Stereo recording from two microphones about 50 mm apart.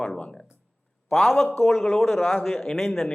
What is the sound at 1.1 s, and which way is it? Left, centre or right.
Speech, centre.